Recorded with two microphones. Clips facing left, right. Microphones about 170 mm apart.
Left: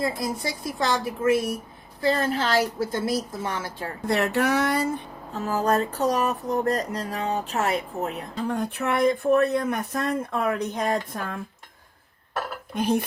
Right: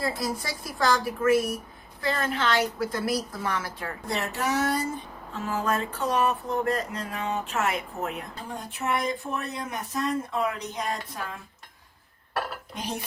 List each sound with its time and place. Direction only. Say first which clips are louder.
0.2 s a woman's voice: left 1 dB; centre (ahead or behind)
0.4 s a woman's voice: right 1 dB; 25° left (ahead or behind)
4.0 s speech: left 7 dB; 65° left (ahead or behind)
5.3 s a sound: left 5 dB; 40° left (ahead or behind)
8.4 s speech: left 5 dB; 60° left (ahead or behind)
12.7 s speech: left 12 dB; 55° left (ahead or behind)